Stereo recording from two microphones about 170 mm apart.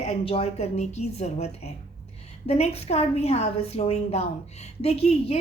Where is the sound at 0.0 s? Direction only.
35° left (ahead or behind).